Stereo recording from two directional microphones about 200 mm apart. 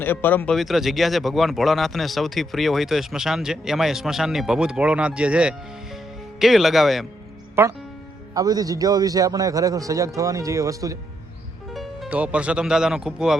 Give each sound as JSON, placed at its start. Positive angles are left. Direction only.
{"t": 0.0, "sound": "speech", "side_deg": 10}
{"t": 7.6, "sound": "a man's voice", "side_deg": -10}
{"t": 11.7, "sound": "speech", "side_deg": 0}